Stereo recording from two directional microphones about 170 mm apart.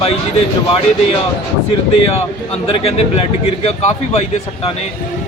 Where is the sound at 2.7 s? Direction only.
35° left (ahead or behind).